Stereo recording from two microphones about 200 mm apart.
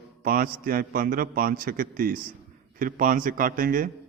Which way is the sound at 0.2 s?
45° right (ahead or behind).